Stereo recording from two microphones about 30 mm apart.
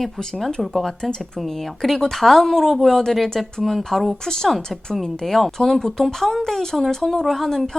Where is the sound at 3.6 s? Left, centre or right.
Centre.